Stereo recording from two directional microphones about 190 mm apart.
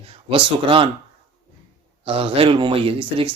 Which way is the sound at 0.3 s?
30° right (ahead or behind).